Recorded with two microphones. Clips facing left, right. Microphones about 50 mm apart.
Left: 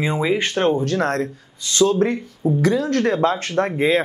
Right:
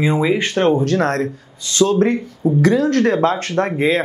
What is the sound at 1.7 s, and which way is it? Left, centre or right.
Speech, left.